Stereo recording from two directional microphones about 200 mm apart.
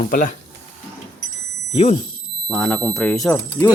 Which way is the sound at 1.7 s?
30° left (ahead or behind).